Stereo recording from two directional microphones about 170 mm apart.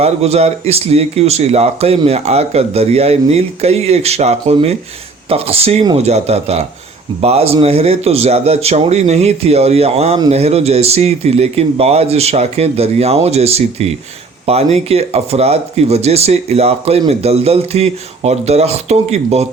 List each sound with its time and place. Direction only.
0.0 s speech: 40° right (ahead or behind)